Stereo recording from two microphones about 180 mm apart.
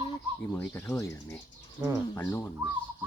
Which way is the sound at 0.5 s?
15° left (ahead or behind).